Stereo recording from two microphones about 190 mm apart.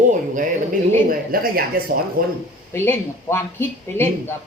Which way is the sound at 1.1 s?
50° right (ahead or behind).